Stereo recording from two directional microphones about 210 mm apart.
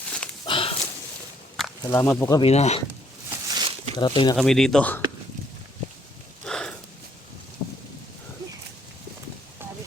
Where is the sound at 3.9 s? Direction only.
20° left (ahead or behind).